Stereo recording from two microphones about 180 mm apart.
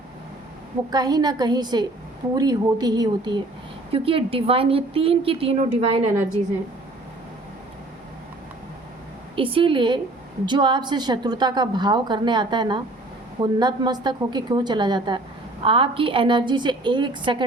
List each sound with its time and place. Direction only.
0.9 s a woman's voice: 20° right (ahead or behind)
9.3 s a woman's voice: 30° right (ahead or behind)